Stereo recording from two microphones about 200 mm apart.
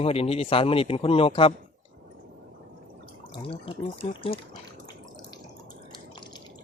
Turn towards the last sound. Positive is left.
turn(degrees=20)  # may be behind; listen again after turning